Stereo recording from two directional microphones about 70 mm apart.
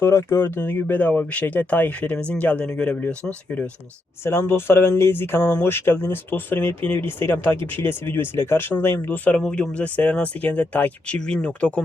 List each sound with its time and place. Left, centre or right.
0.0 s speech: left
4.2 s speech: left
9.1 s speech: centre